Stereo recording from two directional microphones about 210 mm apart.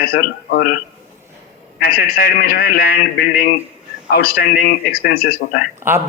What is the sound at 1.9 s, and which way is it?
Speech, 45° left (ahead or behind).